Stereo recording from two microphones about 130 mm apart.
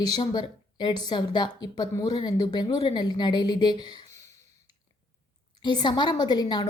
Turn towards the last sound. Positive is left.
turn(degrees=35)  # may be behind; listen again after turning